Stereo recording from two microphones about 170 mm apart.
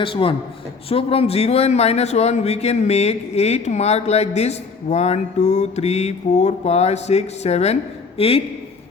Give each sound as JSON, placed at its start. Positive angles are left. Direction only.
{"t": 0.0, "sound": "speech", "side_deg": 30}